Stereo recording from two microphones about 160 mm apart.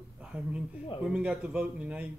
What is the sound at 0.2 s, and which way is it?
Speech, 5° right (ahead or behind).